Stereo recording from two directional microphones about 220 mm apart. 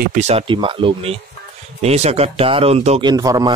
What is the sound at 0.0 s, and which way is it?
Speech, 35° right (ahead or behind).